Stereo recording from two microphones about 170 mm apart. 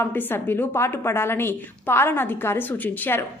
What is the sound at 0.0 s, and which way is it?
A woman's voice, 10° left (ahead or behind).